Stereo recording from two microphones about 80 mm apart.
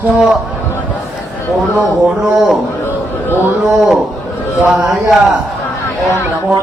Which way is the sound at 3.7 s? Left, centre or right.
Centre.